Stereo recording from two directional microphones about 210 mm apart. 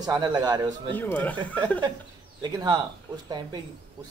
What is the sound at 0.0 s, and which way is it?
Speech, 20° right (ahead or behind).